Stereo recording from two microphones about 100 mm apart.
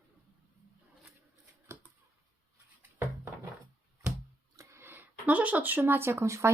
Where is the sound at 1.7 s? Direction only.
30° right (ahead or behind).